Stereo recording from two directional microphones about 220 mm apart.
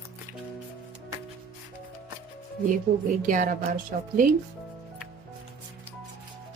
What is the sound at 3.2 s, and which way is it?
A woman's voice, 35° right (ahead or behind).